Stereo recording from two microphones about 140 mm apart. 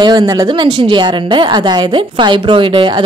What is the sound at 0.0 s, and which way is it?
Speech, 30° right (ahead or behind).